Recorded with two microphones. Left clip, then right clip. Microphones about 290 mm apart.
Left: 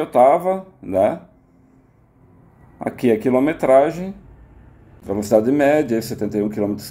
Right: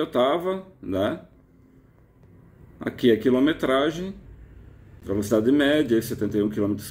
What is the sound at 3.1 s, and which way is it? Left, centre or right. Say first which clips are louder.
Speech: left 5 dB; left.